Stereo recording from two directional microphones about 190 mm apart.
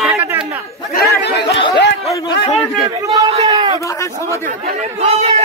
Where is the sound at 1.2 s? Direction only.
65° left (ahead or behind).